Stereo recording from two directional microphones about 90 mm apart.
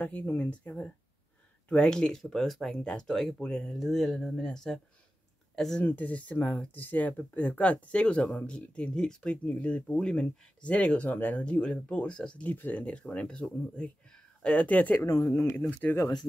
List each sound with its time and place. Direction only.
0.0 s speech: 15° left (ahead or behind)
3.8 s speech: centre (ahead or behind)
5.8 s speech: 20° left (ahead or behind)
15.0 s speech: 30° left (ahead or behind)